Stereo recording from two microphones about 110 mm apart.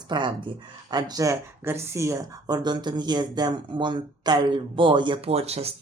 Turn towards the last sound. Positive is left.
turn(degrees=-70)  # may be behind; listen again after turning